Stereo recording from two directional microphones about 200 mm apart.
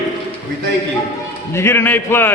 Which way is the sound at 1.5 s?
15° left (ahead or behind).